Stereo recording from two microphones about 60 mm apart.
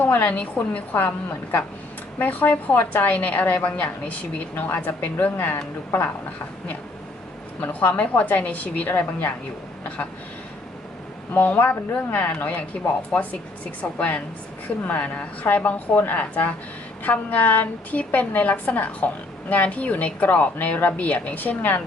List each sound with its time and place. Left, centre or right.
0.0 s a woman's voice: left
7.6 s a woman's voice: left
11.3 s a woman's voice: left